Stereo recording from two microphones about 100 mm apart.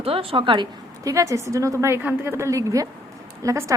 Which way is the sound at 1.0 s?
35° right (ahead or behind).